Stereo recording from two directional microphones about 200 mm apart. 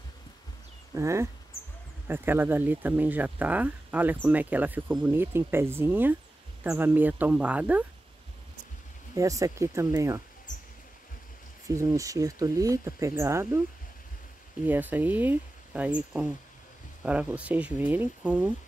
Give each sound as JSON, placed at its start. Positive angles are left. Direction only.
{"t": 0.9, "sound": "speech", "side_deg": -15}
{"t": 9.1, "sound": "speech", "side_deg": -15}
{"t": 11.6, "sound": "speech", "side_deg": -15}
{"t": 14.7, "sound": "speech", "side_deg": -10}